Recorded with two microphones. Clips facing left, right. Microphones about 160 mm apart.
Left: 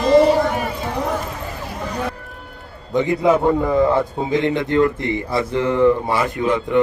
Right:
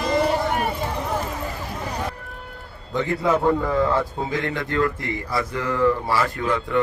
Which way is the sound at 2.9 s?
15° left (ahead or behind).